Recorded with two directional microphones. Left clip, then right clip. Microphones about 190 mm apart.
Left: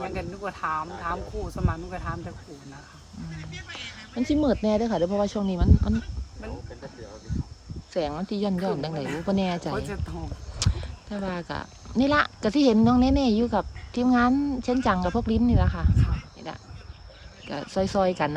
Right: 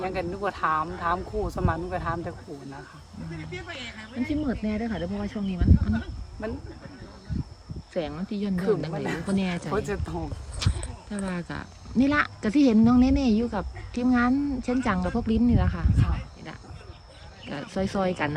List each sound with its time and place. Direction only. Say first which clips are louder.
0.0 s speech: right 4 dB; centre (ahead or behind)
3.5 s speech: right 1 dB; 40° right (ahead or behind)
4.3 s speech: left 8 dB; 20° left (ahead or behind)
7.9 s speech: left 3 dB; 15° left (ahead or behind)
10.1 s speech: right 4 dB; centre (ahead or behind)
16.5 s cricket: left 6 dB; 10° left (ahead or behind)
17.5 s speech: left 4 dB; 10° left (ahead or behind)